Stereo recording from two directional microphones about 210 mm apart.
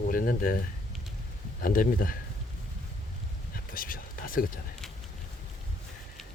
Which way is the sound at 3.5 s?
45° left (ahead or behind).